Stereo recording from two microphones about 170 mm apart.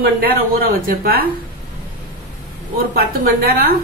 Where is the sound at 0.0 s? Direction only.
60° right (ahead or behind).